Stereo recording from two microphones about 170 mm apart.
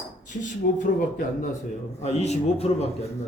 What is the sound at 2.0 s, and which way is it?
Speech, 40° left (ahead or behind).